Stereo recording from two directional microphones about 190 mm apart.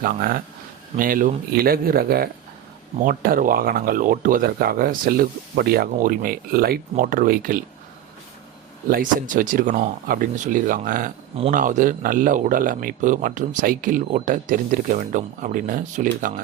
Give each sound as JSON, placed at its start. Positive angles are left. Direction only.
{"t": 0.0, "sound": "speech", "side_deg": -50}
{"t": 8.9, "sound": "speech", "side_deg": -45}